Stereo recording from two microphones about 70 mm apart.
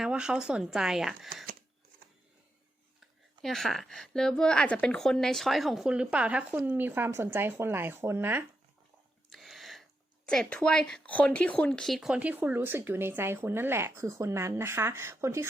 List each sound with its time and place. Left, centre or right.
0.0 s speech: centre
3.0 s a woman's voice: centre
4.9 s speech: centre
5.9 s speech: centre
9.3 s a sound: centre
10.2 s speech: centre
12.1 s speech: right